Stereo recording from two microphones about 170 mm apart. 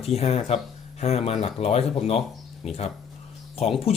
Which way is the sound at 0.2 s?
35° left (ahead or behind).